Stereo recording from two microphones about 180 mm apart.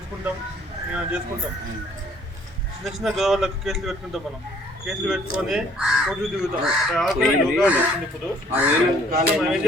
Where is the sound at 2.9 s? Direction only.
Centre (ahead or behind).